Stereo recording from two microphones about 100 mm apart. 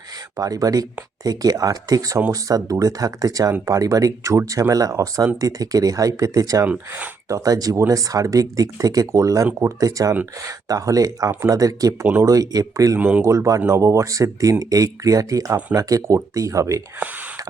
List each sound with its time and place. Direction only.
0.3 s speech: 35° right (ahead or behind)
6.7 s speech: 15° right (ahead or behind)
7.3 s speech: 35° right (ahead or behind)
13.0 s speech: 15° right (ahead or behind)
13.2 s speech: 30° right (ahead or behind)